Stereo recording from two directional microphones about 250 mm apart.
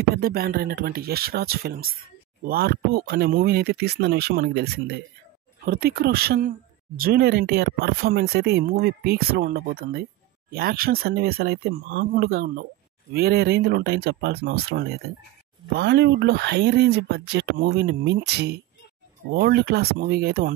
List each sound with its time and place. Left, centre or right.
0.1 s speech: right